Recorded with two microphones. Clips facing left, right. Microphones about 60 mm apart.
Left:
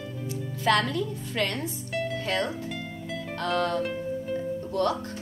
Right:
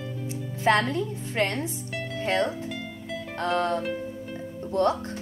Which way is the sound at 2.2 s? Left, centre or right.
Right.